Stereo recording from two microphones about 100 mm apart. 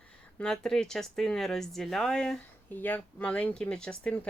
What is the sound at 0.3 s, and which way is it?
Speech, 5° left (ahead or behind).